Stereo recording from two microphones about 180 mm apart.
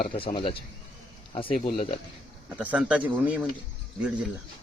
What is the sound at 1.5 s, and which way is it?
Speech, 50° left (ahead or behind).